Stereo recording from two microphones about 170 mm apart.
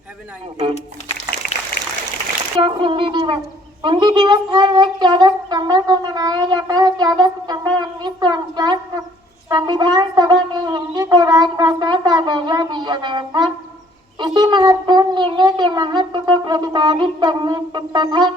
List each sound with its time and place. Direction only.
2.6 s speech: 30° right (ahead or behind)